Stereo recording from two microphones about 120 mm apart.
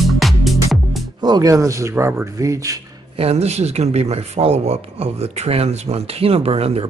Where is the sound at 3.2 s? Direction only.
60° right (ahead or behind).